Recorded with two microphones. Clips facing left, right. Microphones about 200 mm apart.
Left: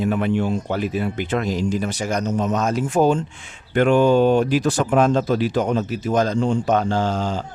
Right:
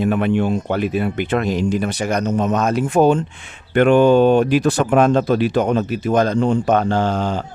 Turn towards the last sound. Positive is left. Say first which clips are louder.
# right 3 dB
turn(degrees=-60)  # may be behind; listen again after turning